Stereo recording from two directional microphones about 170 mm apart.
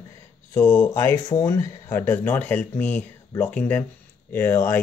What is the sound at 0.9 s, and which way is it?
Speech, 20° left (ahead or behind).